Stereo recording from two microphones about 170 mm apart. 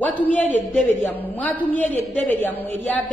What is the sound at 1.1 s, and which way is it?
A woman's voice, 10° left (ahead or behind).